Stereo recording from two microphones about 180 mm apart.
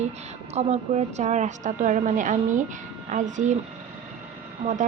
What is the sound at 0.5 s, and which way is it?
A woman's voice, 40° right (ahead or behind).